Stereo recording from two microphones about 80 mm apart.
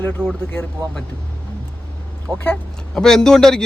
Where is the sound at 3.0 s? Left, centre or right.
Centre.